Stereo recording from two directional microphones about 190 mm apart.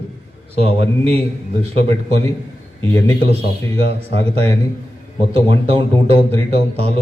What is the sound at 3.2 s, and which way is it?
A man's voice, 30° right (ahead or behind).